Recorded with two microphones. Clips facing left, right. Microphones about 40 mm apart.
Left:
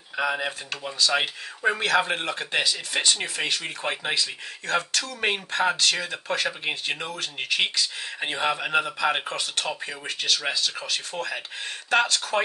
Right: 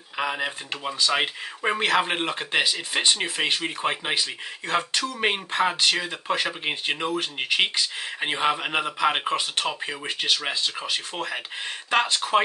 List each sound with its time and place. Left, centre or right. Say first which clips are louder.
0.2 s speech: left 1 dB; centre
1.1 s speech: right 1 dB; right